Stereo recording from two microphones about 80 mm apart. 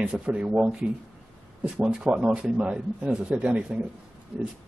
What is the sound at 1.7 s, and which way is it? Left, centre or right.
A man's voice, centre.